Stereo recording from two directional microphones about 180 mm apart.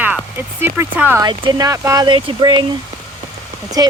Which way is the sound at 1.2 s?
25° right (ahead or behind).